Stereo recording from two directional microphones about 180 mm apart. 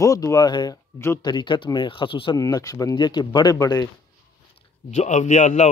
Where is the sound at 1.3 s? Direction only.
25° left (ahead or behind).